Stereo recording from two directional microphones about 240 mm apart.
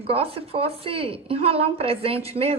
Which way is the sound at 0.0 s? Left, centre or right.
Right.